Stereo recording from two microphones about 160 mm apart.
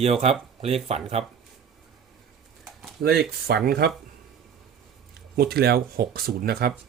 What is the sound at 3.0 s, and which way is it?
Speech, 90° right.